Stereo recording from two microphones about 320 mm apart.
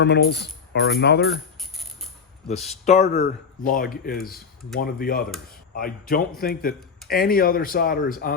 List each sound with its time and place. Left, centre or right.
0.0 s speech: left
2.5 s speech: left